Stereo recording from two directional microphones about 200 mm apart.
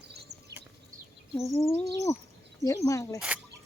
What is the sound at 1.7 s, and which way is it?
Speech, 15° left (ahead or behind).